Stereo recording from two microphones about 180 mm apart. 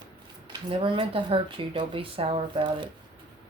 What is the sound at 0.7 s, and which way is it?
Speech, 30° right (ahead or behind).